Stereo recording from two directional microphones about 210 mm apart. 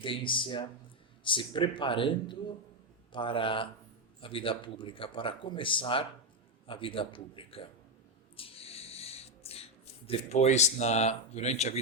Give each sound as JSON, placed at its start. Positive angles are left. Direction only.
{"t": 0.0, "sound": "speech", "side_deg": 25}
{"t": 8.4, "sound": "a sound", "side_deg": 25}
{"t": 10.1, "sound": "speech", "side_deg": 30}